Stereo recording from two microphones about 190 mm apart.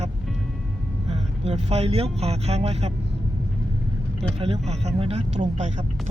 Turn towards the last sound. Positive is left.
turn(degrees=-40)  # may be behind; listen again after turning